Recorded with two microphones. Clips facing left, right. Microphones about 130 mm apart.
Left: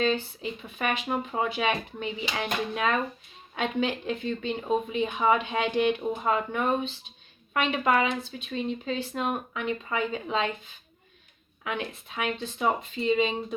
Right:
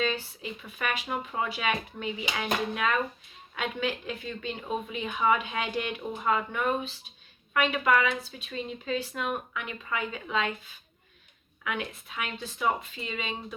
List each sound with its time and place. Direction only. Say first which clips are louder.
0.0 s speech: left 4 dB; 30° left (ahead or behind)